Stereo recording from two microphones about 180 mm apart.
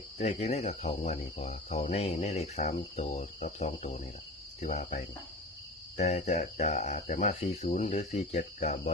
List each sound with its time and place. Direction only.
0.2 s speech: 40° left (ahead or behind)
6.0 s speech: 40° left (ahead or behind)